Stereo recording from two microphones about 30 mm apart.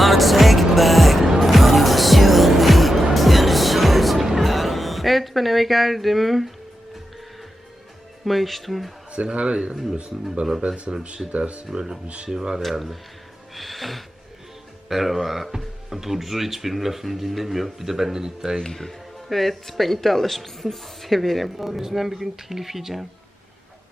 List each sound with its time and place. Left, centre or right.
0.0 s music: centre
8.2 s speech: centre
9.3 s speech: right
10.9 s speech: right
11.3 s speech: right
11.7 s speech: right
13.5 s a sound: centre
14.8 s speech: centre
18.8 s speech: centre